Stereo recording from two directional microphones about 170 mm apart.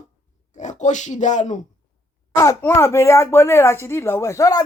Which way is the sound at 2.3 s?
15° left (ahead or behind).